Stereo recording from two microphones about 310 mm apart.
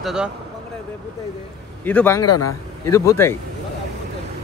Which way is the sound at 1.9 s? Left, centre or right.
Centre.